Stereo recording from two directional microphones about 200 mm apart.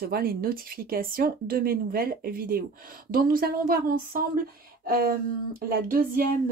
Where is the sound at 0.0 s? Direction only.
50° right (ahead or behind).